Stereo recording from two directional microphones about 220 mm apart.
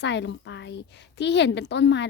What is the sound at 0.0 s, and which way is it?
Speech, 50° left (ahead or behind).